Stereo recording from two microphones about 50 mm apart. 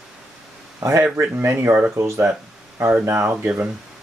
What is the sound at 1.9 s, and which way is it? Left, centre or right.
Speech, right.